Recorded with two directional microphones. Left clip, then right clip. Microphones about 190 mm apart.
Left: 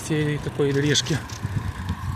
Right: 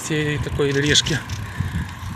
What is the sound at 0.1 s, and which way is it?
Speech, 10° left (ahead or behind).